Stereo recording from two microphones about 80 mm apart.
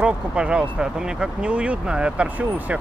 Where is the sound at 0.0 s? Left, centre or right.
Centre.